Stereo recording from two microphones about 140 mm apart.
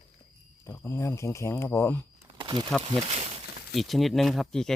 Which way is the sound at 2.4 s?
35° right (ahead or behind).